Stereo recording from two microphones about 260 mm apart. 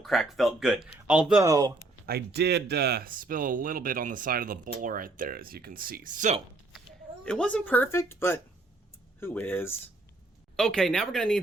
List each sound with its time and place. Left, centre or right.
0.0 s speech: centre
2.0 s speech: right
7.3 s speech: centre